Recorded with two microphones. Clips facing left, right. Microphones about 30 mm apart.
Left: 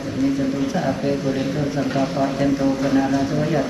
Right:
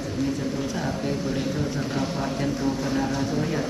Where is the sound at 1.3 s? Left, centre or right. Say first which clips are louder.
Left 5 dB; left.